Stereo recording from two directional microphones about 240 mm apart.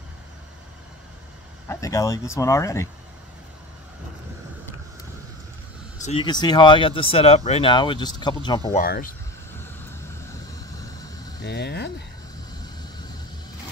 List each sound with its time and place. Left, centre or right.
1.7 s speech: centre
6.0 s speech: left
8.7 s speech: left
11.4 s speech: left